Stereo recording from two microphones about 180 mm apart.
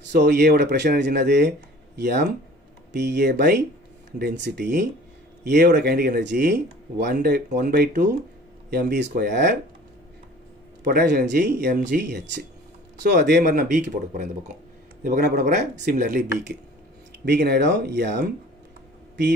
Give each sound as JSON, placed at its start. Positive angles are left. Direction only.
{"t": 0.1, "sound": "speech", "side_deg": -65}
{"t": 2.9, "sound": "speech", "side_deg": -70}
{"t": 10.8, "sound": "speech", "side_deg": -60}
{"t": 17.2, "sound": "speech", "side_deg": -65}